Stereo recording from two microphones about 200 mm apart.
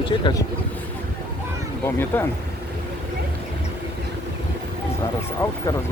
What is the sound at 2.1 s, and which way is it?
Speech, 10° left (ahead or behind).